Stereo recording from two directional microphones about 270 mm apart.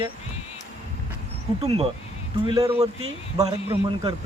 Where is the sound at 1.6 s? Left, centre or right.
Right.